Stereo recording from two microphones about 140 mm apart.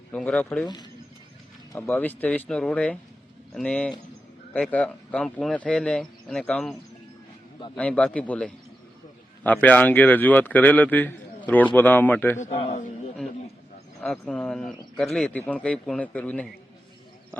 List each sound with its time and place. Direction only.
0.1 s speech: 5° left (ahead or behind)
1.9 s speech: 10° left (ahead or behind)
7.8 s speech: 10° left (ahead or behind)
12.5 s a man's voice: 50° left (ahead or behind)
14.0 s speech: 5° left (ahead or behind)